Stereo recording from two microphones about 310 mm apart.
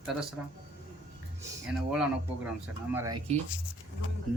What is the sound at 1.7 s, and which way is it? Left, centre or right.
Speech, centre.